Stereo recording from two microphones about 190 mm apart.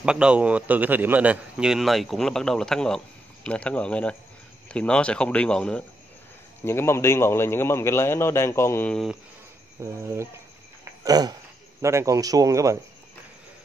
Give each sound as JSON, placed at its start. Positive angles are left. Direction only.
{"t": 0.0, "sound": "a man's voice", "side_deg": -5}
{"t": 9.8, "sound": "speech", "side_deg": -15}
{"t": 11.1, "sound": "speech", "side_deg": -20}